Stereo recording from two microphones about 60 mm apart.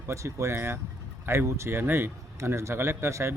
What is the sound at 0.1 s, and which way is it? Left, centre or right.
A man's voice, right.